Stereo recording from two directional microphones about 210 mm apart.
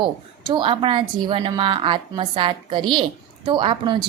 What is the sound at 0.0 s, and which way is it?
Speech, 20° right (ahead or behind).